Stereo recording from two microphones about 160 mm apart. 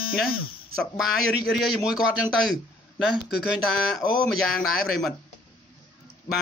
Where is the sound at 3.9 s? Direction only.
Centre (ahead or behind).